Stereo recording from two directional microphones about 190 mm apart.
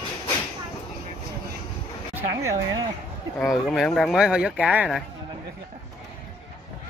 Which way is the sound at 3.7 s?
Centre (ahead or behind).